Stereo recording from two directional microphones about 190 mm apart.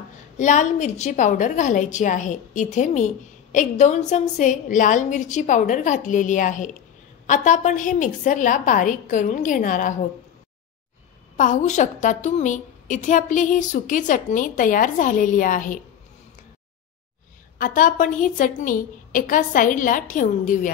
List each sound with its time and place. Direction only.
0.4 s a woman's voice: 40° left (ahead or behind)
11.3 s a woman's voice: 40° left (ahead or behind)
17.6 s a woman's voice: 45° left (ahead or behind)